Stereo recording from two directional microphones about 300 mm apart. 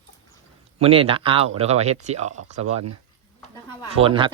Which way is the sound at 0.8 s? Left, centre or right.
Centre.